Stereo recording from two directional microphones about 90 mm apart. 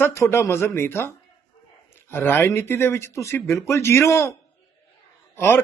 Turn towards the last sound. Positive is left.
turn(degrees=25)  # may be behind; listen again after turning